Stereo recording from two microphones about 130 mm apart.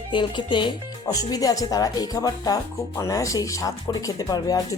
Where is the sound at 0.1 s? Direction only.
35° left (ahead or behind).